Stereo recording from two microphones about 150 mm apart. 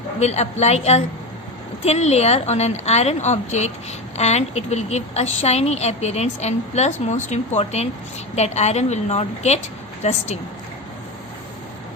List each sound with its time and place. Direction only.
0.2 s a woman's voice: 50° left (ahead or behind)